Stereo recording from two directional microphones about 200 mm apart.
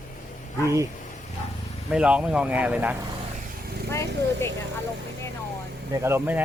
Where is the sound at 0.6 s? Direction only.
15° right (ahead or behind).